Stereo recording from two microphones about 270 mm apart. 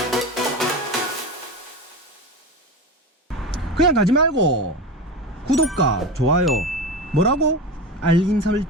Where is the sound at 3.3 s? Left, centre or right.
Centre.